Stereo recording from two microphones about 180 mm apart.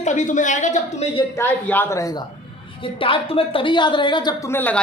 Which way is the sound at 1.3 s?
10° left (ahead or behind).